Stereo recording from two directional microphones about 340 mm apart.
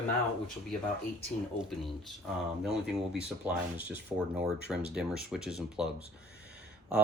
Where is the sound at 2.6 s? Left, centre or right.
Centre.